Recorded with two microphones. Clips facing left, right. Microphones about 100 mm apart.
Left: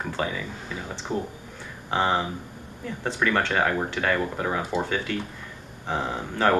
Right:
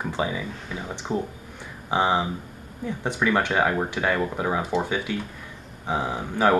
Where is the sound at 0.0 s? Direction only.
15° right (ahead or behind).